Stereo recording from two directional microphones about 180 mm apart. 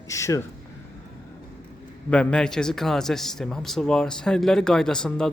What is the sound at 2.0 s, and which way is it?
A man's voice, 5° left (ahead or behind).